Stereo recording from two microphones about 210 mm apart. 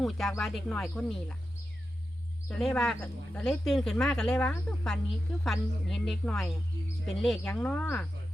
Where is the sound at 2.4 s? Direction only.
5° left (ahead or behind).